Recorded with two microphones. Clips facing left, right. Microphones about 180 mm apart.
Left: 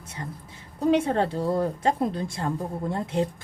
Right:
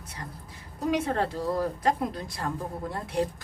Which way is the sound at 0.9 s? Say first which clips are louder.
Left 5 dB; 30° left (ahead or behind).